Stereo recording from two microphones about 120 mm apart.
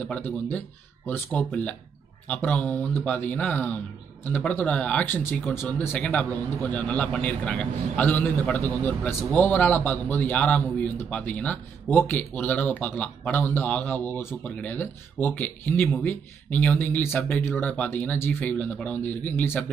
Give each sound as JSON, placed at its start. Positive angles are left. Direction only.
{"t": 0.0, "sound": "a man's voice", "side_deg": 15}